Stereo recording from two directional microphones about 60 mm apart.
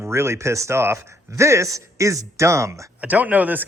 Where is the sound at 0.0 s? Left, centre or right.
Right.